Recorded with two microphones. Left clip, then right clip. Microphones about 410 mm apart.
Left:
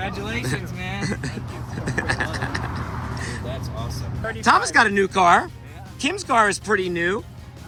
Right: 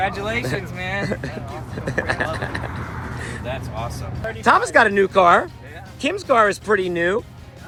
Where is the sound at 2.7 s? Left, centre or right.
Left.